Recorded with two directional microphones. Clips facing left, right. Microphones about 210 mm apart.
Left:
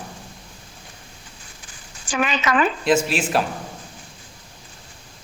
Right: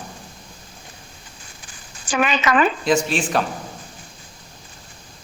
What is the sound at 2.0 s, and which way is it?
Speech, 70° right (ahead or behind).